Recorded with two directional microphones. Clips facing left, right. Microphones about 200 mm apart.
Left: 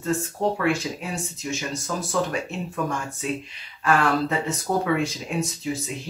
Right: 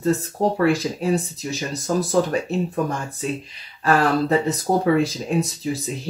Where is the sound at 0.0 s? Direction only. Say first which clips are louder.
Right 4 dB; 35° right (ahead or behind).